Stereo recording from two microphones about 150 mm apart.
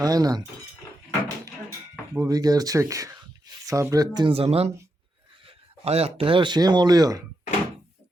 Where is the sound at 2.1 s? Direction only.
25° right (ahead or behind).